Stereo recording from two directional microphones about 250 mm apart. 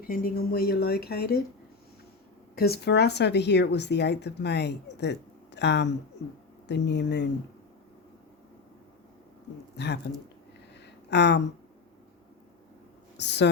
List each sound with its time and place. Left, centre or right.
0.0 s speech: left
2.6 s speech: left
9.7 s speech: left
10.8 s a sound: left
13.1 s a woman's voice: left